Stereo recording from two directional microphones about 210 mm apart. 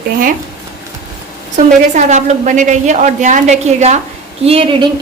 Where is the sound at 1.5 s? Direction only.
35° right (ahead or behind).